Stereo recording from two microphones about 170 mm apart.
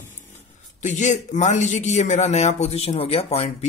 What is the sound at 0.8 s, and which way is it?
A man's voice, 45° left (ahead or behind).